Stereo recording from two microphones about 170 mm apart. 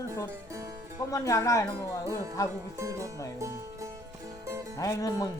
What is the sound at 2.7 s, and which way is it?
Speech, 20° right (ahead or behind).